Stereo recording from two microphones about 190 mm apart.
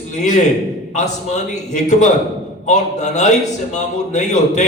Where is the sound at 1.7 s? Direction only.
40° left (ahead or behind).